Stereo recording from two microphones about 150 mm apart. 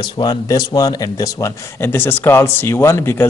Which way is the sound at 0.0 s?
30° left (ahead or behind).